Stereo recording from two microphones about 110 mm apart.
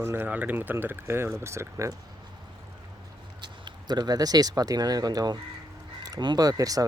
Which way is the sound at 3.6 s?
40° right (ahead or behind).